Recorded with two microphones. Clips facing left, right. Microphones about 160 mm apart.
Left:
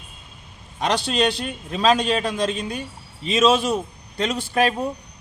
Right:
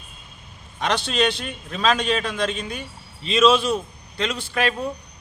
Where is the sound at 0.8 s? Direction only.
35° left (ahead or behind).